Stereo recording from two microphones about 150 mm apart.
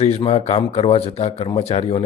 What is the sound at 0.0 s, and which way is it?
Speech, 40° left (ahead or behind).